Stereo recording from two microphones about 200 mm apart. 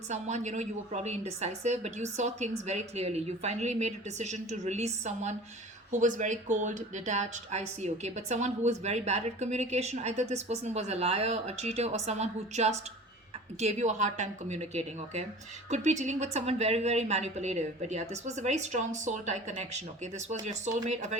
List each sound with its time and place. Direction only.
0.1 s speech: 35° right (ahead or behind)